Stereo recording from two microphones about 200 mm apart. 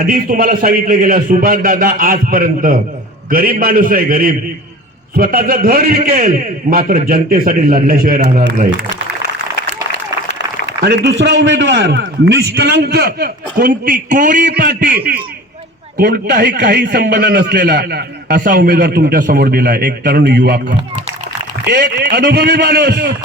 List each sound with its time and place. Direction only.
0.0 s a man's voice: 45° right (ahead or behind)
9.9 s a man's voice: 60° right (ahead or behind)
21.6 s a man's voice: 55° right (ahead or behind)